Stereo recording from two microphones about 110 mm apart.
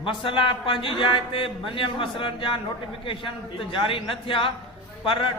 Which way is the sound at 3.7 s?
50° left (ahead or behind).